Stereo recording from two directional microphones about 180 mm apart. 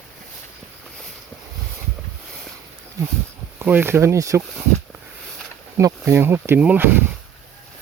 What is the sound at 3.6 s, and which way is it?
Speech, 10° right (ahead or behind).